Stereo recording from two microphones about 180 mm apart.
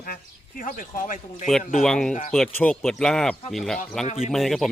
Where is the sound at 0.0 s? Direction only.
50° left (ahead or behind).